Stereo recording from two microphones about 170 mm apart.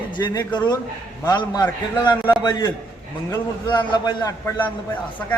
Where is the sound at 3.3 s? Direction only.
25° left (ahead or behind).